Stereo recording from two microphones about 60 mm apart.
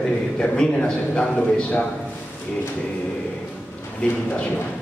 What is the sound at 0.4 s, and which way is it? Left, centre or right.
A man's voice, centre.